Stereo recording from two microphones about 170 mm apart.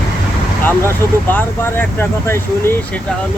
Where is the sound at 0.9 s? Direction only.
10° left (ahead or behind).